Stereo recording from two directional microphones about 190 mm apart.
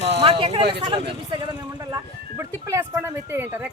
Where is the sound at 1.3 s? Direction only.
25° right (ahead or behind).